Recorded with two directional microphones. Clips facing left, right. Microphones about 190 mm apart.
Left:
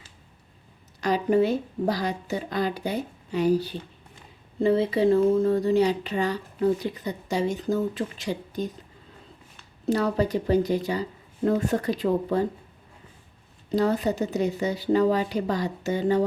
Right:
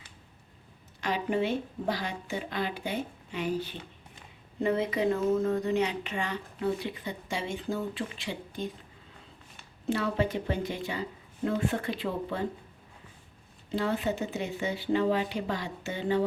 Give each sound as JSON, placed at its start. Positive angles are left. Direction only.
{"t": 1.0, "sound": "speech", "side_deg": 40}
{"t": 9.8, "sound": "speech", "side_deg": 40}
{"t": 13.7, "sound": "speech", "side_deg": 40}